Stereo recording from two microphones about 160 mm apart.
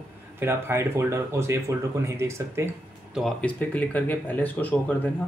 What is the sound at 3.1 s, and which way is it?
Speech, centre (ahead or behind).